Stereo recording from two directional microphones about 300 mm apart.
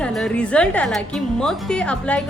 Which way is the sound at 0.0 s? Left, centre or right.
Centre.